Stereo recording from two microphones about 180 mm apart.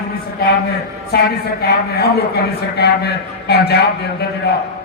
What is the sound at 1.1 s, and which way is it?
A man's voice, 60° left (ahead or behind).